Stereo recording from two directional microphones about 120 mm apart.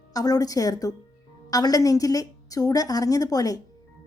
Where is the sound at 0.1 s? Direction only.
30° left (ahead or behind).